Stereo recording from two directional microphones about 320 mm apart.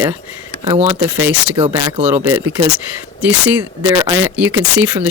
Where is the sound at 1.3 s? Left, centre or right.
Centre.